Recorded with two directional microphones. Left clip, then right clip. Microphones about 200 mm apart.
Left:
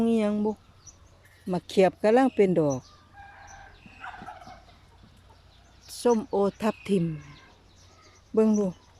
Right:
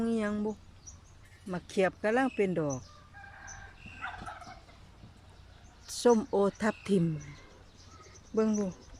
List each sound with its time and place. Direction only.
0.0 s speech: 15° left (ahead or behind)
5.9 s speech: centre (ahead or behind)
8.4 s speech: 15° left (ahead or behind)